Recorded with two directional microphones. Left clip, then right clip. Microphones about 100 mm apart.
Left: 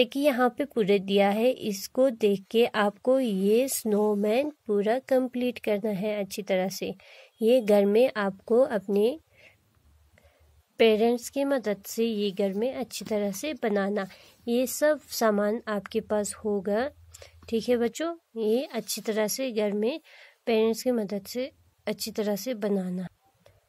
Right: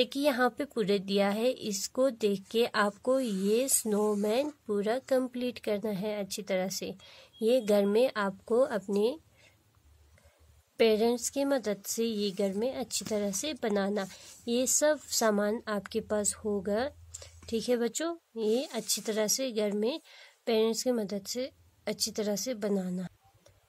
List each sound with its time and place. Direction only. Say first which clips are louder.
0.0 s speech: left 4 dB; 25° left (ahead or behind)
8.9 s a sound: left 4 dB; 30° left (ahead or behind)
10.8 s speech: left 4 dB; 25° left (ahead or behind)